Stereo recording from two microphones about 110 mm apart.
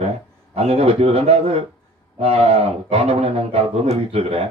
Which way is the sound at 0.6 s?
70° right (ahead or behind).